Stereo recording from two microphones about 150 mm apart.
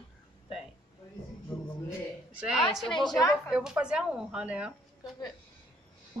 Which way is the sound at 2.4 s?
5° right (ahead or behind).